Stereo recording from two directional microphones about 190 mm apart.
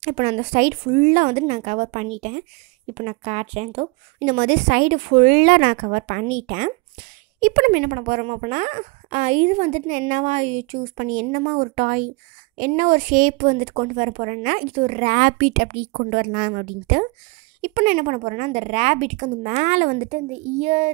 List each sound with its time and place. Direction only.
0.0 s speech: 35° right (ahead or behind)